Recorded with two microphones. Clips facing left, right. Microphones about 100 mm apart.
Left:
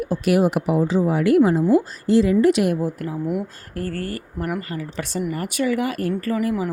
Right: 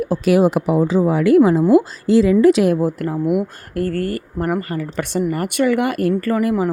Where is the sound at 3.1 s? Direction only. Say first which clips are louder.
Right 6 dB; 60° right (ahead or behind).